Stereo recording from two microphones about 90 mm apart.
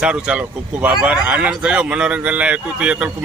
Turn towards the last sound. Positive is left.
turn(degrees=-10)  # may be behind; listen again after turning